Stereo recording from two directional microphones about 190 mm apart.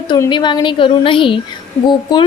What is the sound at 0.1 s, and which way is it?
A woman's voice, 25° left (ahead or behind).